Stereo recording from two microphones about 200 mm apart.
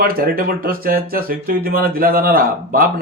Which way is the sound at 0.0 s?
45° right (ahead or behind).